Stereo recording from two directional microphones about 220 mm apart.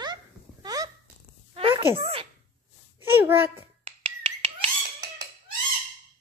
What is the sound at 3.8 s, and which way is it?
Finger snapping, 25° right (ahead or behind).